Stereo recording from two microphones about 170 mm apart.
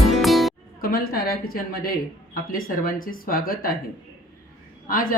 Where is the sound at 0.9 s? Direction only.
60° left (ahead or behind).